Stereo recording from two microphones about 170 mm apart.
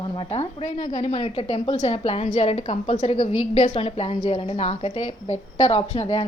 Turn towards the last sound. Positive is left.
turn(degrees=30)  # may be behind; listen again after turning